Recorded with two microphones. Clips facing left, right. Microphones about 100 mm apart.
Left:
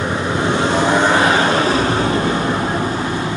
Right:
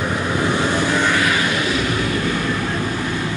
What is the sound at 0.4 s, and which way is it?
Vehicle, 25° left (ahead or behind).